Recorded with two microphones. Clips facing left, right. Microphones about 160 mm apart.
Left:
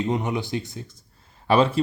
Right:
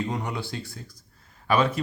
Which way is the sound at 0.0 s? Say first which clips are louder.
Left 5 dB; 20° left (ahead or behind).